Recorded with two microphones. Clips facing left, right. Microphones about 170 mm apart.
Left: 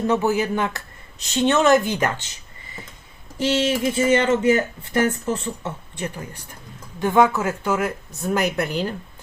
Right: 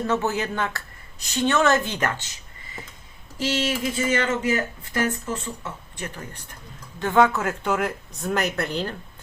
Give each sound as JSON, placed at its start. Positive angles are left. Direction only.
{"t": 0.1, "sound": "speech", "side_deg": 10}
{"t": 3.3, "sound": "speech", "side_deg": 25}
{"t": 7.0, "sound": "speech", "side_deg": 10}